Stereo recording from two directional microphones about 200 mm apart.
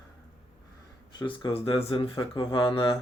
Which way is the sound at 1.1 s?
20° left (ahead or behind).